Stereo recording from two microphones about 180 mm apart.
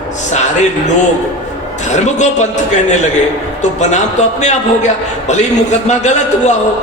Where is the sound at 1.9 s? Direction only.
40° left (ahead or behind).